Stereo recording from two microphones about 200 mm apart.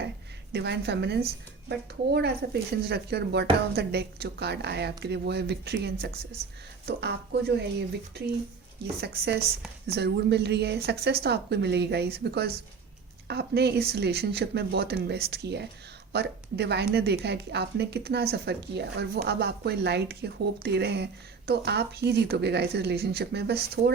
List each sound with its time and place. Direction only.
0.5 s a woman's voice: 55° right (ahead or behind)